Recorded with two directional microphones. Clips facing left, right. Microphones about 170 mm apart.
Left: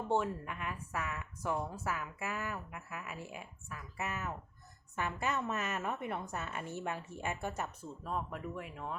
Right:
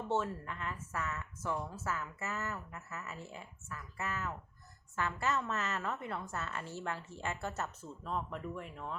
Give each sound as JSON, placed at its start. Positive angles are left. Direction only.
{"t": 0.1, "sound": "a woman's voice", "side_deg": 15}